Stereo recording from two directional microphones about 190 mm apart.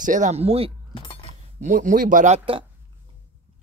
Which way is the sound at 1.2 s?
40° right (ahead or behind).